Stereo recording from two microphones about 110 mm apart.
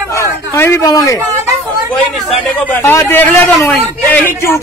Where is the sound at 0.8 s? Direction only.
35° left (ahead or behind).